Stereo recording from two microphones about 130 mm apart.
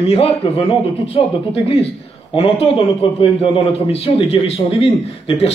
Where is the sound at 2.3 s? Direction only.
45° left (ahead or behind).